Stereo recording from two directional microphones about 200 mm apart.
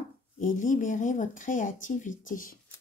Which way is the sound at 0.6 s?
40° left (ahead or behind).